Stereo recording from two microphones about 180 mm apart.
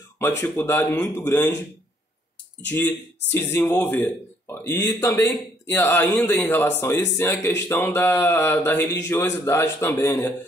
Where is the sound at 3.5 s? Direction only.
10° left (ahead or behind).